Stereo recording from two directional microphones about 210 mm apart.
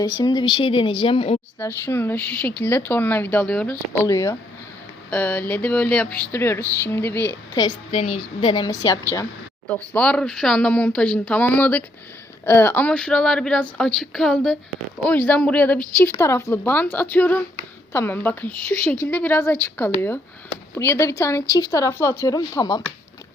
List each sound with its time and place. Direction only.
0.0 s a woman's voice: 20° left (ahead or behind)
1.5 s a woman's voice: 10° left (ahead or behind)
9.6 s speech: 5° left (ahead or behind)